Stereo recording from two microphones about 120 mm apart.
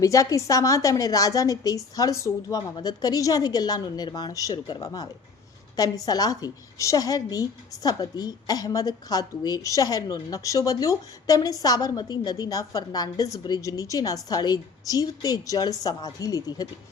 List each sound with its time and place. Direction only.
0.0 s a woman's voice: 25° left (ahead or behind)